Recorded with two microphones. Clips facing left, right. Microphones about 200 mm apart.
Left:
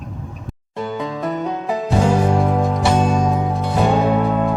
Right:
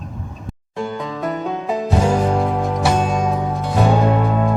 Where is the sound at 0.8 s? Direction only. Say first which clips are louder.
Left 1 dB; centre (ahead or behind).